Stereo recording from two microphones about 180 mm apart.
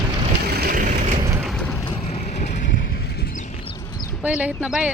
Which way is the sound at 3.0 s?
60° left (ahead or behind).